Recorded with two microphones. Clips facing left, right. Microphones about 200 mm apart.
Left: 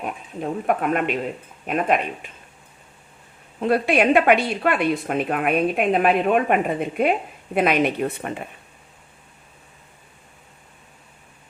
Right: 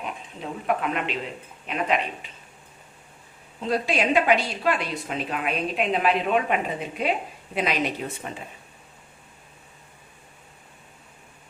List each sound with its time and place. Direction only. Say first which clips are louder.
0.0 s speech: left 6 dB; 50° left (ahead or behind)
3.6 s speech: left 6 dB; 60° left (ahead or behind)